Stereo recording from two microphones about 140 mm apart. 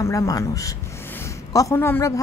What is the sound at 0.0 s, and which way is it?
A woman's voice, 20° left (ahead or behind).